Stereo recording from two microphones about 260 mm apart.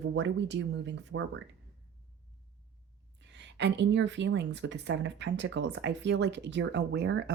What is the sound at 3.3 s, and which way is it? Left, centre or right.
Speech, right.